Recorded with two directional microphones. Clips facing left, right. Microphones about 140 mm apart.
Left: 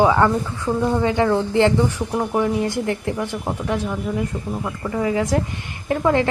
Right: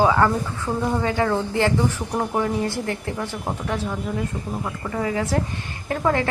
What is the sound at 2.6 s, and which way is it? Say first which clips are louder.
A woman's voice: left 3 dB; 20° left (ahead or behind).